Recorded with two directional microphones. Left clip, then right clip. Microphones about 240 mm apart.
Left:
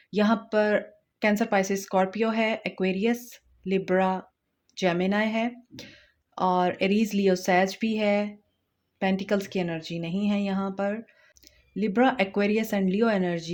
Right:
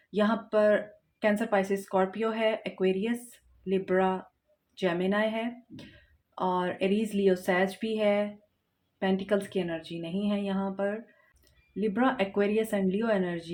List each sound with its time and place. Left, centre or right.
0.1 s speech: left